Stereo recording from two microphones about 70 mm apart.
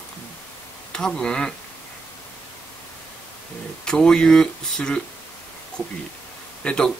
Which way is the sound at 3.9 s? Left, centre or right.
Centre.